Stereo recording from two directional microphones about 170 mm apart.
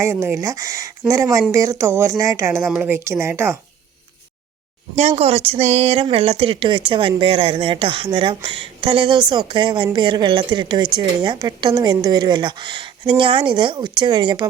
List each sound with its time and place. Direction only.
0.0 s speech: 15° right (ahead or behind)
4.9 s a woman's voice: 40° right (ahead or behind)